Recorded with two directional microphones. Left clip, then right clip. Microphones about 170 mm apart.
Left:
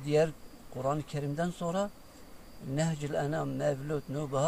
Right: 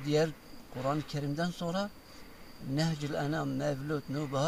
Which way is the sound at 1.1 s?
40° left (ahead or behind).